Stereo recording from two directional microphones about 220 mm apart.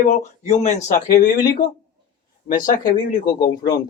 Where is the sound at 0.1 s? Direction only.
30° left (ahead or behind).